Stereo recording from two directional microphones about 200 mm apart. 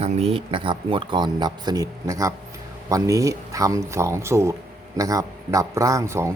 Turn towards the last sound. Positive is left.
turn(degrees=-15)  # may be behind; listen again after turning